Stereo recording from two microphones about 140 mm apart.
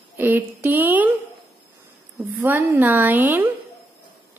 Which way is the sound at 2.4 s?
15° right (ahead or behind).